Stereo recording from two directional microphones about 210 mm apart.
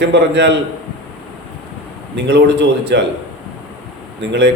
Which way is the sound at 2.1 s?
55° right (ahead or behind).